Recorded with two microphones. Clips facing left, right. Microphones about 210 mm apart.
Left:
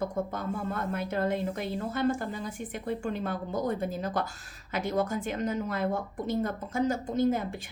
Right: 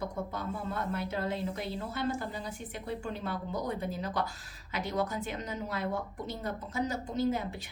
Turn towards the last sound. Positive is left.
turn(degrees=50)  # may be behind; listen again after turning